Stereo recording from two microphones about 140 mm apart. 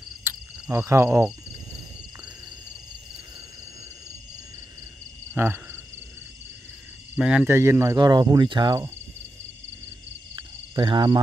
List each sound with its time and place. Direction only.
0.2 s cricket: 15° right (ahead or behind)
5.3 s a sound: 15° right (ahead or behind)
7.2 s speech: 10° right (ahead or behind); by 8.7 s 35° right (ahead or behind)
10.3 s cricket: 35° right (ahead or behind)